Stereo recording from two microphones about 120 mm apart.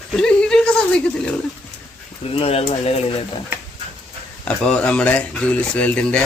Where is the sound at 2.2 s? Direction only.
55° left (ahead or behind).